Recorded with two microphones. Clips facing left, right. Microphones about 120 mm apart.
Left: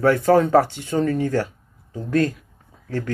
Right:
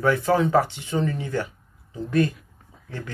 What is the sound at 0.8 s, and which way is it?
Speech, 45° left (ahead or behind).